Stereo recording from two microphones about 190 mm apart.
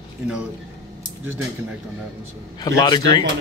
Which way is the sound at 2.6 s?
20° left (ahead or behind).